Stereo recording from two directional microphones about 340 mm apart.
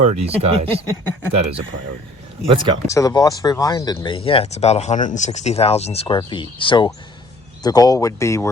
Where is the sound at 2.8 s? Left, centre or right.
Centre.